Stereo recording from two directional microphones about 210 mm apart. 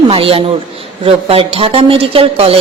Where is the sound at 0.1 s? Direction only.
25° right (ahead or behind).